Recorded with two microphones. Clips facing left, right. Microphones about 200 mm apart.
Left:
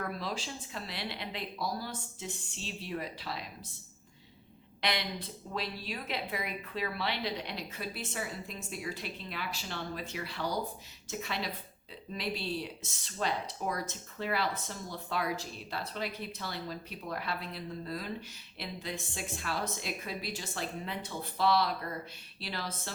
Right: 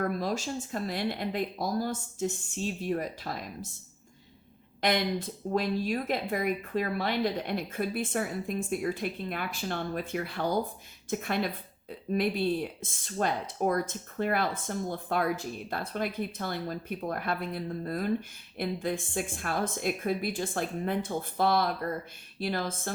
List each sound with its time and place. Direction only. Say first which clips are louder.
0.0 s a woman's voice: right 7 dB; 45° right (ahead or behind)
4.8 s a woman's voice: right 7 dB; 45° right (ahead or behind)